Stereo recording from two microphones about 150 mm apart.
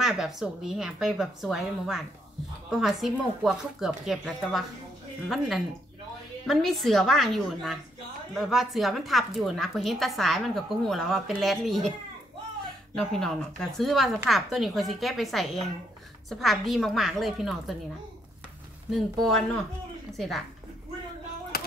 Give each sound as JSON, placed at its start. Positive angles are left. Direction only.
{"t": 0.0, "sound": "a woman's voice", "side_deg": 0}
{"t": 6.4, "sound": "a woman's voice", "side_deg": 0}
{"t": 12.9, "sound": "a woman's voice", "side_deg": 5}
{"t": 18.9, "sound": "a woman's voice", "side_deg": 0}
{"t": 21.5, "sound": "music", "side_deg": 90}